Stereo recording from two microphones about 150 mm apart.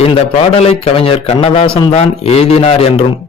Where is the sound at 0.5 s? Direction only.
40° left (ahead or behind).